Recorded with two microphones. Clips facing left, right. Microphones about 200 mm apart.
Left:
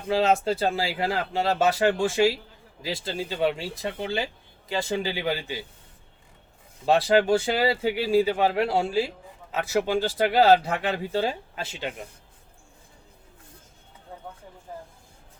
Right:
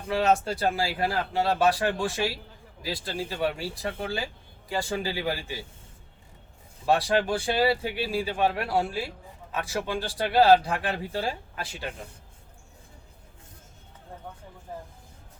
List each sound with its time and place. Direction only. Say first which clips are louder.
0.1 s speech: left 2 dB; 25° left (ahead or behind)
6.8 s speech: left 4 dB; 25° left (ahead or behind)